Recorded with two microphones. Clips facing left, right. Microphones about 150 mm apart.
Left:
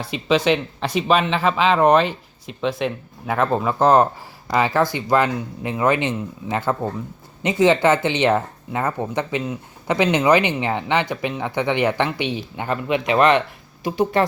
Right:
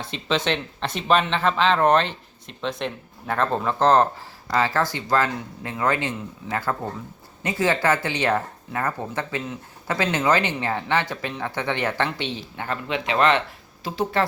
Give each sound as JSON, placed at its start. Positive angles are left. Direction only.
{"t": 0.1, "sound": "speech", "side_deg": 10}